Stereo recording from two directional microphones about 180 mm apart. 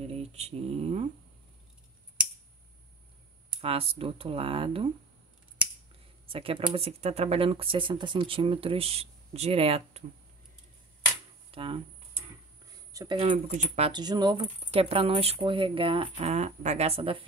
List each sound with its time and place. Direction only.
0.1 s speech: 35° right (ahead or behind)
3.6 s speech: 30° right (ahead or behind)
6.2 s speech: 30° right (ahead or behind)
11.5 s speech: 30° right (ahead or behind)
12.6 s a sound: 20° right (ahead or behind)
13.5 s speech: 40° right (ahead or behind)